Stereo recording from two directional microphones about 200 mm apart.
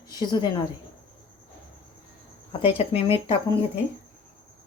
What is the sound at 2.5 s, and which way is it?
Speech, 25° left (ahead or behind).